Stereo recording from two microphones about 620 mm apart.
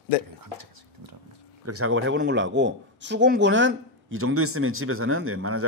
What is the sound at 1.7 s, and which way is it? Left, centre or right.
A man's voice, centre.